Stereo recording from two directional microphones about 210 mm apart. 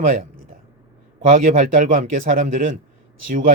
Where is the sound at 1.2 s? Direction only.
35° right (ahead or behind).